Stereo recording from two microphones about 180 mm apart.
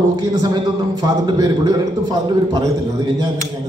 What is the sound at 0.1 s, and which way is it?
A man's voice, 20° right (ahead or behind).